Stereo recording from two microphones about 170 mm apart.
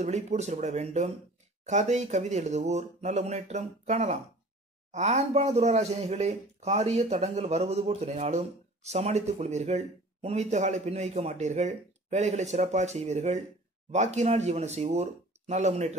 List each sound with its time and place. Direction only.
0.0 s speech: 40° right (ahead or behind)